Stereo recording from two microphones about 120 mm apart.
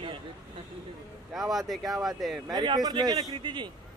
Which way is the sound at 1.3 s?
Centre (ahead or behind).